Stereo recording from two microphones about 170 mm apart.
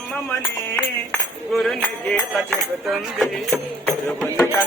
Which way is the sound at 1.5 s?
Centre (ahead or behind).